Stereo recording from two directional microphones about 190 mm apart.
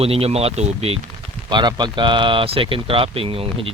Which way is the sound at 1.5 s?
25° right (ahead or behind).